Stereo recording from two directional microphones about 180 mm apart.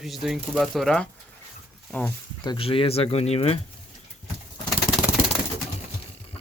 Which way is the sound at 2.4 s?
30° left (ahead or behind).